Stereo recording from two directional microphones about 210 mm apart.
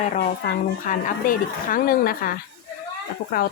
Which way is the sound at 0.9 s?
40° left (ahead or behind).